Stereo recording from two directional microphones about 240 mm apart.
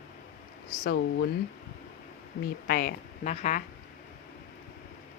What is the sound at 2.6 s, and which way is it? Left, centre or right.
Speech, left.